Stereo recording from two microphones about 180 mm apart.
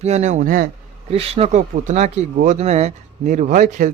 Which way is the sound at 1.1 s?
35° right (ahead or behind).